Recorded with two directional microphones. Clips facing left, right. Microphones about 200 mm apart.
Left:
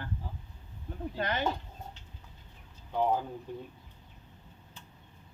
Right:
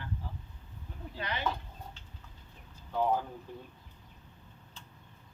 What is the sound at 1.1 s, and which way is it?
Speech, 45° left (ahead or behind).